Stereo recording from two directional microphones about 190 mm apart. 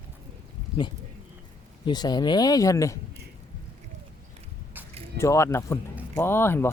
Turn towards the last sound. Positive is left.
turn(degrees=10)  # may be behind; listen again after turning